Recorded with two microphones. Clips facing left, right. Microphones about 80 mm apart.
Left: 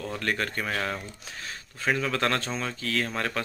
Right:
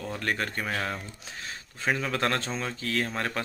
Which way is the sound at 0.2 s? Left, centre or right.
Centre.